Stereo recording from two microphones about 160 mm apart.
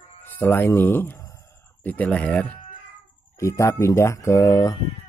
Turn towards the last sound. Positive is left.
turn(degrees=20)  # may be behind; listen again after turning